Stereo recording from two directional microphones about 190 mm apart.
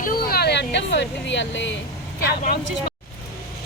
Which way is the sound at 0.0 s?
50° left (ahead or behind).